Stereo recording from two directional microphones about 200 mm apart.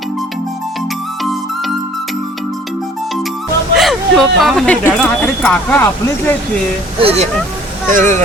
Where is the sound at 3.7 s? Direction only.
Centre (ahead or behind).